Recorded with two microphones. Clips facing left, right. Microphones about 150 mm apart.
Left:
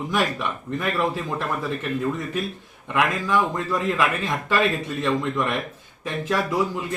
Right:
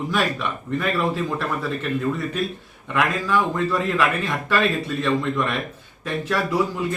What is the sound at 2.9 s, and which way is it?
A man's voice, 15° left (ahead or behind).